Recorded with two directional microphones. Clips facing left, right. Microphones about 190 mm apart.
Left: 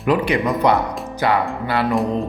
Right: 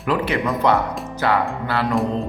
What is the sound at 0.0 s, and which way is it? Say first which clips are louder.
A man's voice: left 3 dB; 15° left (ahead or behind).